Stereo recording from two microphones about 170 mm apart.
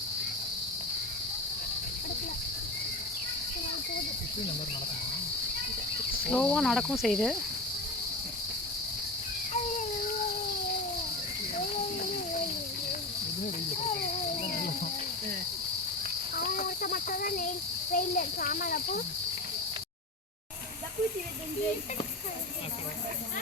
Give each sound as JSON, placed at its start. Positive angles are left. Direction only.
{"t": 6.2, "sound": "cricket", "side_deg": 5}
{"t": 16.4, "sound": "cricket", "side_deg": 55}
{"t": 17.9, "sound": "a child's voice", "side_deg": 55}